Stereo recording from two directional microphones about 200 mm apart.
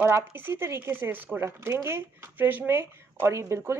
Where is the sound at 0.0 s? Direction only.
10° right (ahead or behind).